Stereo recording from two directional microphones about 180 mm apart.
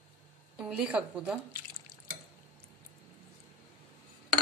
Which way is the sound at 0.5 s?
5° right (ahead or behind).